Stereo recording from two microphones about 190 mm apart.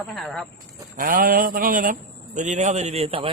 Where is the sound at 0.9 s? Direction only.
45° right (ahead or behind).